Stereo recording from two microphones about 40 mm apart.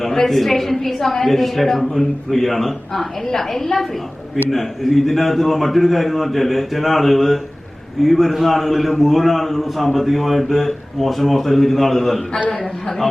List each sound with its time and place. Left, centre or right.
0.0 s a woman's voice: centre
12.5 s a man's voice: left